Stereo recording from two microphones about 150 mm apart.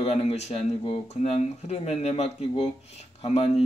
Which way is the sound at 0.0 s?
45° left (ahead or behind).